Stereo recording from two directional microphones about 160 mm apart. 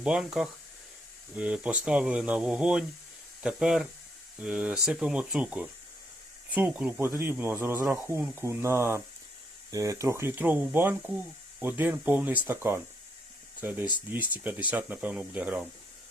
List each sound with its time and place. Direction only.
0.0 s speech: 5° right (ahead or behind)